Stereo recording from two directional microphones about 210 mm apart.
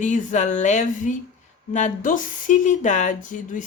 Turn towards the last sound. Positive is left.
turn(degrees=35)  # may be behind; listen again after turning